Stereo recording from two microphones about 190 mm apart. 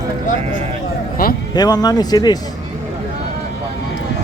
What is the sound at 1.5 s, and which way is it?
Speech, 20° left (ahead or behind).